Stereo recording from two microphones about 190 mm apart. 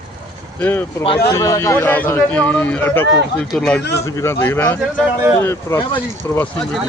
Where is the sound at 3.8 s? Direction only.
60° left (ahead or behind).